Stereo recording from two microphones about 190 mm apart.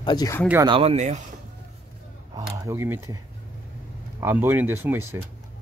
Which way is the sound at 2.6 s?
15° right (ahead or behind).